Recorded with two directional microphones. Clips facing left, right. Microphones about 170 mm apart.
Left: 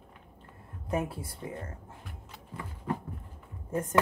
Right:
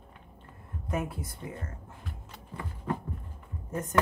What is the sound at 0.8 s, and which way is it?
Speech, 30° left (ahead or behind).